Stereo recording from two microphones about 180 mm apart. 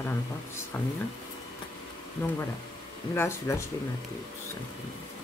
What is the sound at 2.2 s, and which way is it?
Speech, 10° left (ahead or behind).